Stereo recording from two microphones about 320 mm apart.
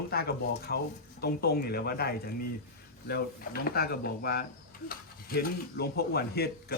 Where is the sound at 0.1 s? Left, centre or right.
Left.